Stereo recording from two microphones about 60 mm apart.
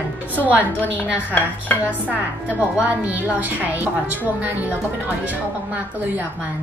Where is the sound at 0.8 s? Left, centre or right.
Left.